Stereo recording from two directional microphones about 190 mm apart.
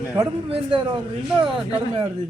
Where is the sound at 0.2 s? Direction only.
30° right (ahead or behind).